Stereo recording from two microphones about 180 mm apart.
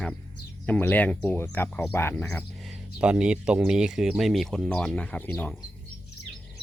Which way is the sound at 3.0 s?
5° right (ahead or behind).